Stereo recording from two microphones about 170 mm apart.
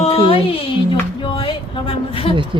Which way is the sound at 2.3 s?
30° right (ahead or behind).